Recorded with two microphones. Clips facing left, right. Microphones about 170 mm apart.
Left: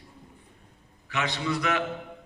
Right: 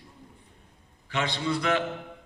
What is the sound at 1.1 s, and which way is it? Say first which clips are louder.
Speech: right 1 dB; 30° right (ahead or behind).